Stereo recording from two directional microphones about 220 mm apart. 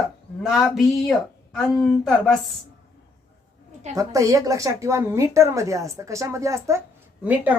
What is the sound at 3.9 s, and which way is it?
Speech, 15° right (ahead or behind).